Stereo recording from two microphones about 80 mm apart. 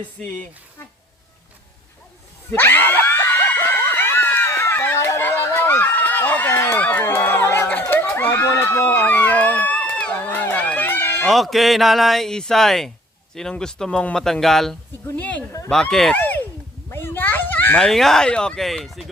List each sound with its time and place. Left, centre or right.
2.6 s screaming: left
5.0 s a sound: left
6.7 s run: centre
7.0 s crowd: left
11.3 s speech: centre
15.1 s a sound: left
15.7 s speech: centre
16.1 s a sound: left
16.9 s children playing: left
17.7 s speech: centre